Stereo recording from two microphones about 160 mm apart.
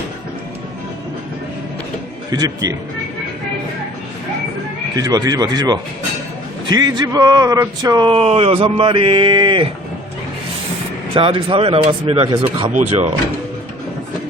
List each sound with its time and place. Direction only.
2.3 s speech: 25° right (ahead or behind)
4.9 s speech: 25° right (ahead or behind)
11.1 s speech: 35° right (ahead or behind)